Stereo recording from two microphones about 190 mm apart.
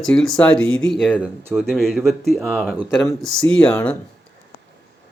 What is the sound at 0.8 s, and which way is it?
Speech, centre (ahead or behind).